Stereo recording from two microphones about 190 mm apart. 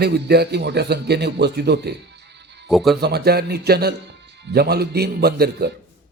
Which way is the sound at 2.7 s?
Centre (ahead or behind).